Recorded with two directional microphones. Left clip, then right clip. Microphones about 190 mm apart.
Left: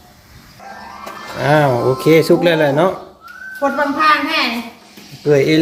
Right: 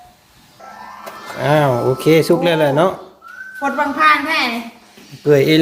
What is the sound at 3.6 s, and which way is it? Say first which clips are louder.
Speech: even; 5° left (ahead or behind).